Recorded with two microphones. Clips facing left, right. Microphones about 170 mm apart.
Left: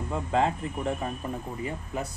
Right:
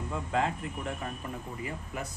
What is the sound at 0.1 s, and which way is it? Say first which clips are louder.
Speech: left 5 dB; 30° left (ahead or behind).